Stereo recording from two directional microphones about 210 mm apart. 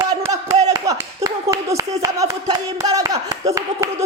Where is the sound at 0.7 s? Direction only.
15° right (ahead or behind).